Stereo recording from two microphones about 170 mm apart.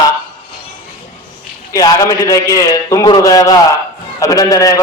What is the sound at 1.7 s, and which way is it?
A man's voice, 20° left (ahead or behind).